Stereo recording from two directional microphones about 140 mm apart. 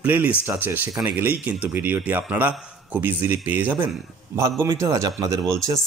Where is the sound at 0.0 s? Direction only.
10° right (ahead or behind).